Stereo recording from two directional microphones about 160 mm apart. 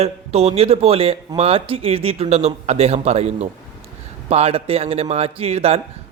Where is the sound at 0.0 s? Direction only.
40° right (ahead or behind).